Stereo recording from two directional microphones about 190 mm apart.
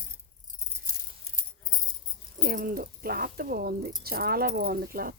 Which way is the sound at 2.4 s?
50° right (ahead or behind).